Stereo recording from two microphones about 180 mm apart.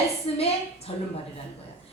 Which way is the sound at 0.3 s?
30° left (ahead or behind).